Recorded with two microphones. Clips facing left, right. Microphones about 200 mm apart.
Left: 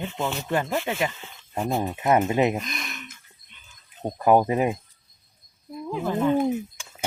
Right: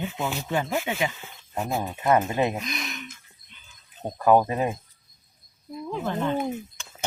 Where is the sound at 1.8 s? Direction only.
15° left (ahead or behind).